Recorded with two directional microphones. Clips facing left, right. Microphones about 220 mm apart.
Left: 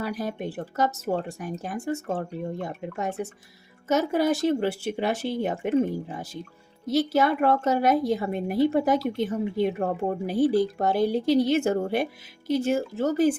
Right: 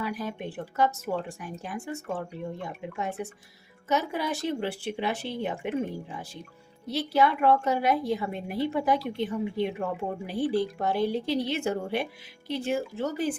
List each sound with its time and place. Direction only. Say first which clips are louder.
0.0 s a woman's voice: left 3 dB; 40° left (ahead or behind)